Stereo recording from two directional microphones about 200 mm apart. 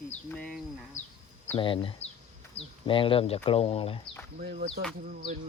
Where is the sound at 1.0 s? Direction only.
35° left (ahead or behind).